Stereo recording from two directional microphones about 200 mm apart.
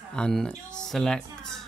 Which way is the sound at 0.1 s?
5° left (ahead or behind).